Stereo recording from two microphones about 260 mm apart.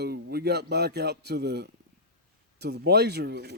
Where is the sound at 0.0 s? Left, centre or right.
Right.